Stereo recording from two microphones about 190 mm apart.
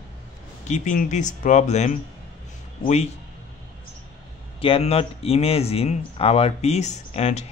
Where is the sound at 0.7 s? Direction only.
40° left (ahead or behind).